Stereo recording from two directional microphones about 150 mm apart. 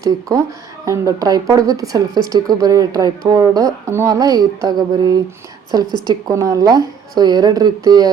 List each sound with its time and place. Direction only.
0.0 s speech: 20° right (ahead or behind)